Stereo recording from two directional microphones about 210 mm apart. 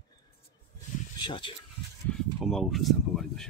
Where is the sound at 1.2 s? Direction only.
20° left (ahead or behind).